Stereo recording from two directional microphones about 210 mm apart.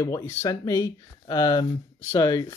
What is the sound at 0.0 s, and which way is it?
Speech, 15° left (ahead or behind).